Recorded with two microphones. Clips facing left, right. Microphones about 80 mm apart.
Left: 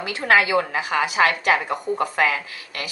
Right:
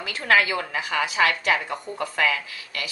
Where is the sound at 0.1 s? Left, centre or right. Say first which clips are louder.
Left 3 dB; left.